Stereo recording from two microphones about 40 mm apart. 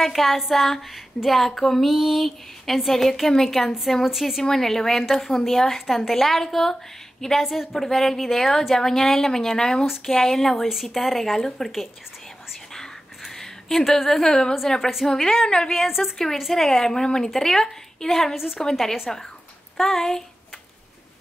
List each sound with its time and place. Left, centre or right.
0.0 s speech: centre
4.5 s a woman's voice: centre
7.4 s a woman's voice: centre
7.7 s a woman's voice: centre
10.7 s speech: centre
13.2 s a woman's voice: centre
16.0 s a woman's voice: left
16.5 s a woman's voice: centre
18.3 s a woman's voice: centre
18.6 s a woman's voice: centre